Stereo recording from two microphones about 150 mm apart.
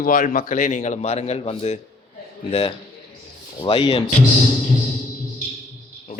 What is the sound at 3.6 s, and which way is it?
Speech, 30° left (ahead or behind).